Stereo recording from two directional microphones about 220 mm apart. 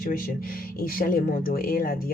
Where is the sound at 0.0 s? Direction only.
40° left (ahead or behind).